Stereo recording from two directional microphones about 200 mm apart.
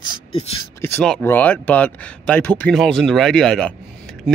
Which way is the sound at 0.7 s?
10° left (ahead or behind).